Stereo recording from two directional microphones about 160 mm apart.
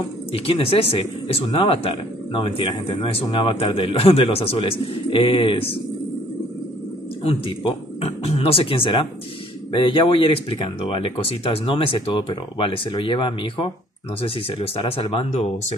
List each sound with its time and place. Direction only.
0.3 s speech: 35° left (ahead or behind)
7.2 s speech: 35° left (ahead or behind)